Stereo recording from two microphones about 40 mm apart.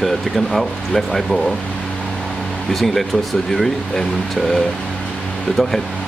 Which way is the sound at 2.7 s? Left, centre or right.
Centre.